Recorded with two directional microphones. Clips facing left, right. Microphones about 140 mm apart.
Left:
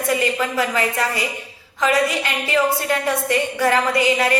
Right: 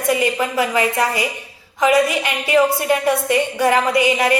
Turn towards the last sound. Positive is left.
turn(degrees=-15)  # may be behind; listen again after turning